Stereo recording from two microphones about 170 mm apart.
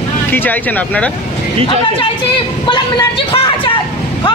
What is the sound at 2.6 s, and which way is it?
Speech, 25° left (ahead or behind).